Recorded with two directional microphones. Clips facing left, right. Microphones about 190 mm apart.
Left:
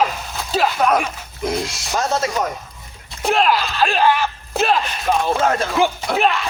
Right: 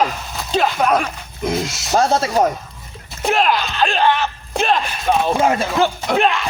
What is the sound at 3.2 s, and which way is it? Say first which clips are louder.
Speech: even; centre (ahead or behind).